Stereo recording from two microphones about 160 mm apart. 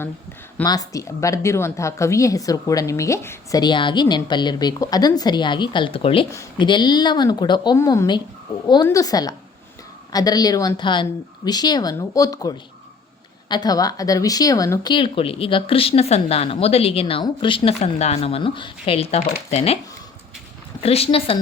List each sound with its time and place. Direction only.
0.6 s a woman's voice: 20° left (ahead or behind); by 19.8 s 40° left (ahead or behind)
20.8 s speech: 40° left (ahead or behind)